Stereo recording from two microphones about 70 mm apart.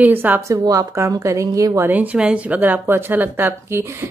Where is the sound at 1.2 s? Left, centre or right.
Right.